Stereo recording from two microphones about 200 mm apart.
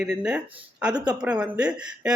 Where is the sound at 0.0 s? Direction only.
5° right (ahead or behind).